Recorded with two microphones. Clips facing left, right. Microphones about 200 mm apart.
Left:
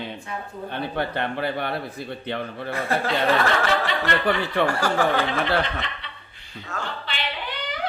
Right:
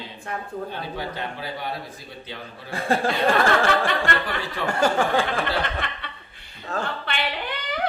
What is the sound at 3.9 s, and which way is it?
Speech, 50° right (ahead or behind).